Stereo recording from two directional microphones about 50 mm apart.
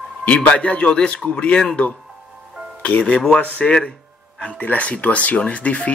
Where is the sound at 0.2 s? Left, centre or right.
Left.